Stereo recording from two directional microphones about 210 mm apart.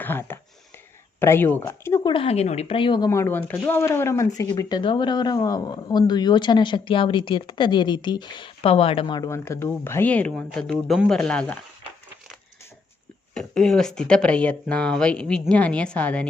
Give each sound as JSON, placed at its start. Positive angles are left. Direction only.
{"t": 0.0, "sound": "speech", "side_deg": 10}
{"t": 2.1, "sound": "speech", "side_deg": 30}
{"t": 13.3, "sound": "speech", "side_deg": 5}